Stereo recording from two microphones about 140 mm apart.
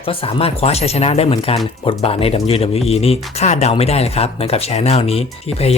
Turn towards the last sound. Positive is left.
turn(degrees=45)  # may be behind; listen again after turning